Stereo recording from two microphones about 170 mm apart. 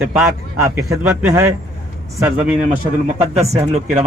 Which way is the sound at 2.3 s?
5° right (ahead or behind).